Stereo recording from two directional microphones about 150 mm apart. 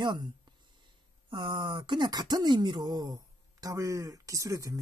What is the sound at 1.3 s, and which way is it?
A woman's voice, 30° right (ahead or behind).